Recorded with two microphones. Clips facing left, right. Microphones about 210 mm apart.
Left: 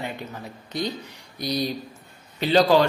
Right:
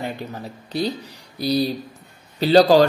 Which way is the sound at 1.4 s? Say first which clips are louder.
Right 5 dB; 35° right (ahead or behind).